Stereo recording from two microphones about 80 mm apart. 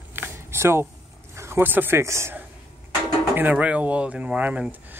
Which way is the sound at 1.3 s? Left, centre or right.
Right.